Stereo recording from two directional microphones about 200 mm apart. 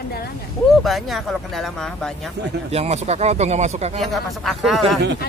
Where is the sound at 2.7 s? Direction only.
30° right (ahead or behind).